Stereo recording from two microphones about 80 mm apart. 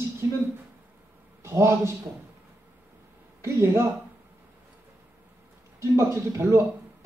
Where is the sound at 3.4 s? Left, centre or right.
Right.